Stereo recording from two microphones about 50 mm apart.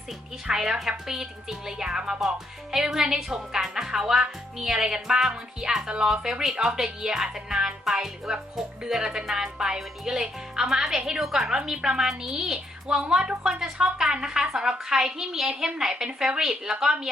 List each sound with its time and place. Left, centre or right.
0.4 s speech: centre